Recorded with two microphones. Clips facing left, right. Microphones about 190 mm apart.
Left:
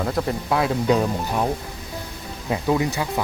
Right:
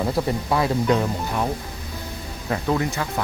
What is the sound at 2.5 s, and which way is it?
Speech, 15° left (ahead or behind).